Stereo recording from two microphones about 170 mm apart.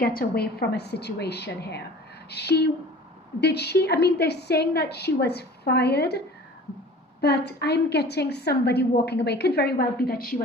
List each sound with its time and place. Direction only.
0.2 s a woman's voice: 70° left (ahead or behind)